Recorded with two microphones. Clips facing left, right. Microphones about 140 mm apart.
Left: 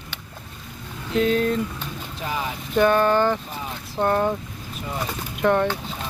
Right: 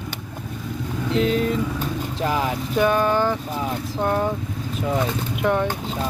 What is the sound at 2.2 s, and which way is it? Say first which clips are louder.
Speech: right 5 dB; 75° right (ahead or behind).